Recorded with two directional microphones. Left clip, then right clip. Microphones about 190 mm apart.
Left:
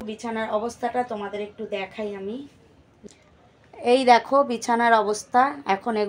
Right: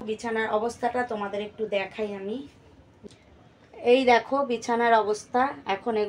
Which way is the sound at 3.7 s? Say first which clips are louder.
Left 3 dB; 50° left (ahead or behind).